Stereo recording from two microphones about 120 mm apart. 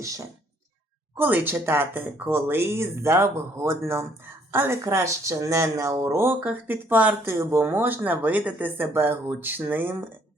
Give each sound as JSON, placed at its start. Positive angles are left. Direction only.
{"t": 0.0, "sound": "speech", "side_deg": -25}